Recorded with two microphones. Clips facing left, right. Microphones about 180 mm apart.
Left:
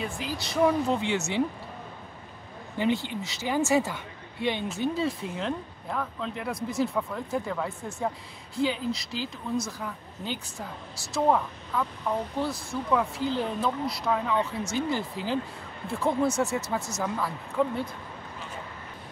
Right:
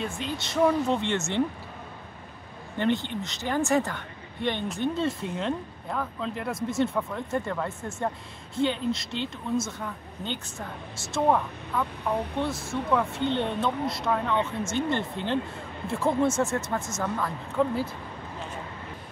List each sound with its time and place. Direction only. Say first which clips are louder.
0.0 s speech: right 1 dB; 5° left (ahead or behind)
2.8 s speech: right 1 dB; 5° left (ahead or behind)